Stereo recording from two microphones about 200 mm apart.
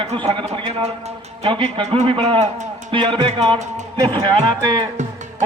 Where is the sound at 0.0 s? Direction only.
30° right (ahead or behind).